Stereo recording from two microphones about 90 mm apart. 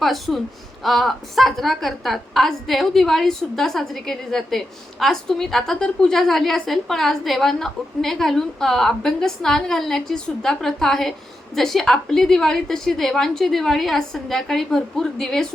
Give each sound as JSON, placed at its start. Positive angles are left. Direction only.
{"t": 0.0, "sound": "a woman's voice", "side_deg": 0}